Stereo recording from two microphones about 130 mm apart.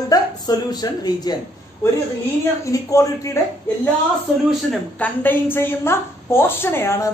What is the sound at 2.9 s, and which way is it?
Speech, 25° left (ahead or behind).